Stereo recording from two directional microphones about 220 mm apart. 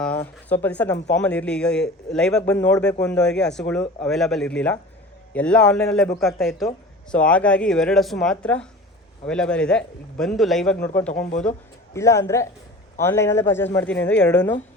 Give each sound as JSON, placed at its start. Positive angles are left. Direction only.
{"t": 0.0, "sound": "speech", "side_deg": 5}